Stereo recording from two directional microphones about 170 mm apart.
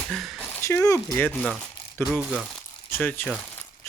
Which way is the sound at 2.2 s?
5° right (ahead or behind).